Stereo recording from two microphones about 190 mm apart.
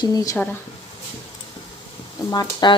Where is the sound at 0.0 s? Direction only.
20° left (ahead or behind).